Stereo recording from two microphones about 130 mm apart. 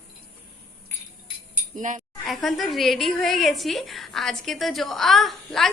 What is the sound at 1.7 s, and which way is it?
Speech, 80° right.